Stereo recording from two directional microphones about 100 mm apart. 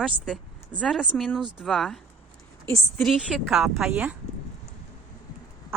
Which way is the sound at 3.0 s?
Centre (ahead or behind).